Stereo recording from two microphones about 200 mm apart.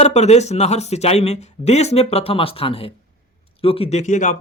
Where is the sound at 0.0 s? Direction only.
35° left (ahead or behind).